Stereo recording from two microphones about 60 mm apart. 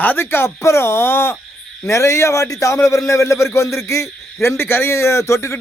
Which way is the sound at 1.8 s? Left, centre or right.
Left.